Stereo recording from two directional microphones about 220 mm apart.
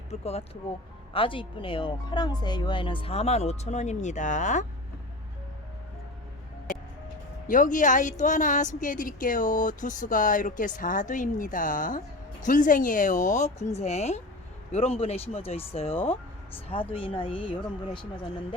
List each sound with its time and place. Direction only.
0.1 s speech: 30° left (ahead or behind)
7.4 s speech: 35° left (ahead or behind)